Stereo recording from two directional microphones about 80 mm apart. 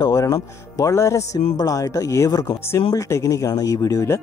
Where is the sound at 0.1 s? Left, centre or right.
Left.